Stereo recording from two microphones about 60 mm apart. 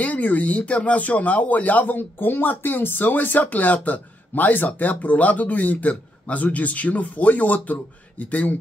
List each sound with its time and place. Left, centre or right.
0.0 s speech: left